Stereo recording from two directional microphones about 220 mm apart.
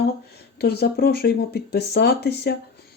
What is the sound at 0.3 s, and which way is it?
Speech, 45° left (ahead or behind).